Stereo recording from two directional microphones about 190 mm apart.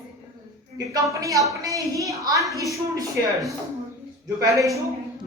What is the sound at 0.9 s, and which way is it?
A woman's voice, 15° right (ahead or behind).